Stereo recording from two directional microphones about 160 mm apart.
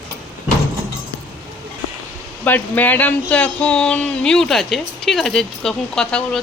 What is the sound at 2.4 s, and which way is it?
Speech, 10° left (ahead or behind).